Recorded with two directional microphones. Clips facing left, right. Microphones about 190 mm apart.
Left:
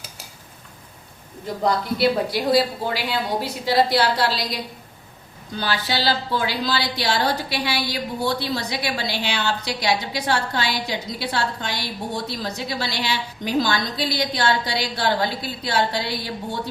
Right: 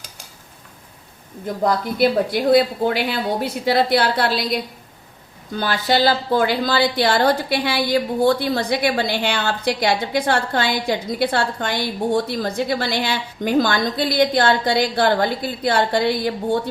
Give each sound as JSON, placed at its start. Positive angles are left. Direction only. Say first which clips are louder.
{"t": 2.0, "sound": "a woman's voice", "louder": "right 3 dB", "side_deg": -55}